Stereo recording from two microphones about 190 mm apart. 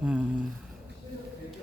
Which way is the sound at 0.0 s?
5° right (ahead or behind).